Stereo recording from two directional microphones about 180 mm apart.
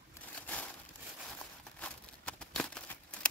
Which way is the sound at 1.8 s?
5° left (ahead or behind).